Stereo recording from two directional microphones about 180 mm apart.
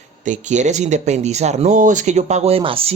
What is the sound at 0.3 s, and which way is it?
Speech, 40° right (ahead or behind).